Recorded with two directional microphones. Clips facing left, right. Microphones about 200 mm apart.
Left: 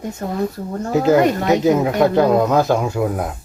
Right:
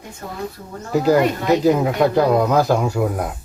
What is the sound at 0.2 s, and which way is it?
Speech, 50° left (ahead or behind).